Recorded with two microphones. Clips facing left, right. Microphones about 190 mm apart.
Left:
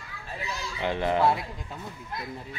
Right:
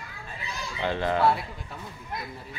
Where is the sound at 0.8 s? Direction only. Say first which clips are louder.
Even; 15° left (ahead or behind).